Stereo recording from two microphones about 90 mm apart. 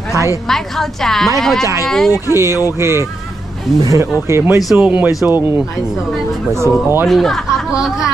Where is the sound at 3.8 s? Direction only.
40° right (ahead or behind).